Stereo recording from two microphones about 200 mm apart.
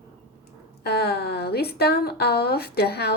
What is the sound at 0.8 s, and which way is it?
A woman's voice, 55° left (ahead or behind).